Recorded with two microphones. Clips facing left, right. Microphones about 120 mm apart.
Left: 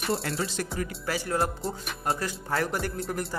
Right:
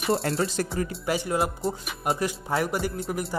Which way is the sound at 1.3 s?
Centre (ahead or behind).